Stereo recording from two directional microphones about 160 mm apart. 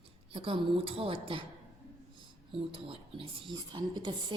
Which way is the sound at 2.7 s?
35° right (ahead or behind).